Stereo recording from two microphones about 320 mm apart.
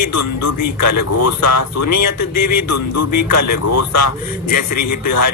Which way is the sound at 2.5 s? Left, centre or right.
Left.